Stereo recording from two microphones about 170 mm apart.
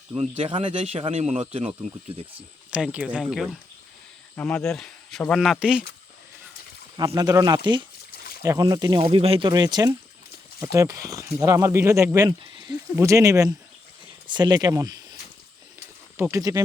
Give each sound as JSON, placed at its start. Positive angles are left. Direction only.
{"t": 0.2, "sound": "speech", "side_deg": -35}
{"t": 2.6, "sound": "speech", "side_deg": -5}
{"t": 6.9, "sound": "speech", "side_deg": -20}
{"t": 12.4, "sound": "a sound", "side_deg": -25}
{"t": 13.0, "sound": "speech", "side_deg": -20}
{"t": 16.1, "sound": "speech", "side_deg": -15}